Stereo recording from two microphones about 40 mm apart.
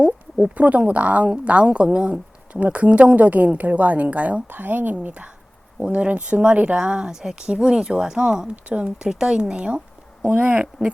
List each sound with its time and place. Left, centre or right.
0.0 s a sound: right
0.5 s a woman's voice: right
3.2 s a woman's voice: right
4.4 s a woman's voice: right
6.7 s speech: right
10.2 s a woman's voice: right
10.8 s speech: centre